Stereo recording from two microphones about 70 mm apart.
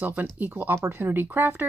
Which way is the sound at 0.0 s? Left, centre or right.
Right.